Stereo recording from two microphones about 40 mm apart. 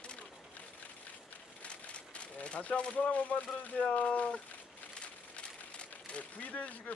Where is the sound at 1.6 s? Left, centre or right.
Left.